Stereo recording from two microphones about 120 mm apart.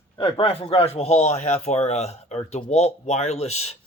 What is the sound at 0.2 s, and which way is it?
Speech, 50° left (ahead or behind).